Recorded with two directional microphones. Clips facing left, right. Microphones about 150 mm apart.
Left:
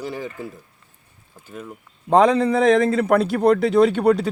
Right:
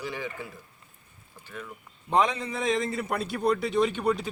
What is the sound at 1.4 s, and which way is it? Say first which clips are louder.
Speech: left 5 dB; 35° left (ahead or behind).